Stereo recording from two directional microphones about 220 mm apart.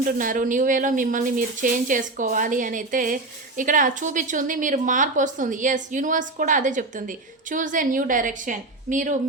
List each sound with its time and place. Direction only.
0.0 s a woman's voice: 40° right (ahead or behind)